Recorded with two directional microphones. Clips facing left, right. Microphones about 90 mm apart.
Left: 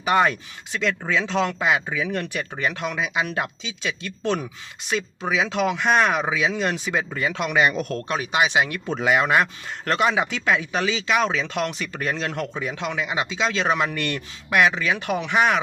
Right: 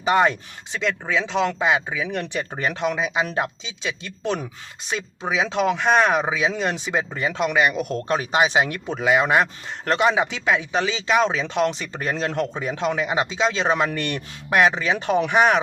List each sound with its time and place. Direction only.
0.0 s speech: 20° right (ahead or behind)
3.8 s speech: 20° right (ahead or behind)
7.5 s speech: 5° right (ahead or behind)
8.0 s speech: 35° right (ahead or behind)
8.9 s speech: 5° right (ahead or behind)
9.2 s speech: 20° right (ahead or behind)